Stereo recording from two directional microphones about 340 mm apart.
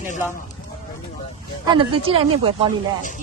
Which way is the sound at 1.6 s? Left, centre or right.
Centre.